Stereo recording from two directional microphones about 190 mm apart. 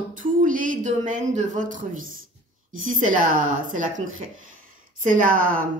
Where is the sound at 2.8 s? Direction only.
45° right (ahead or behind).